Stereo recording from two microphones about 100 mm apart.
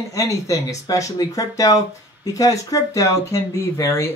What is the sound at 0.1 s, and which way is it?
Speech, 35° left (ahead or behind).